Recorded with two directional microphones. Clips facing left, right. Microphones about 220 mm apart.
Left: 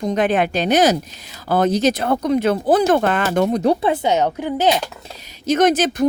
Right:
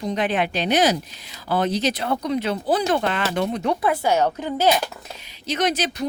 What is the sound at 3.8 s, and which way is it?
Speech, 20° left (ahead or behind).